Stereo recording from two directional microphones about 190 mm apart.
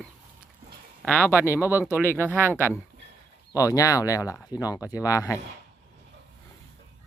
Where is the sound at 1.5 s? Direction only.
10° right (ahead or behind).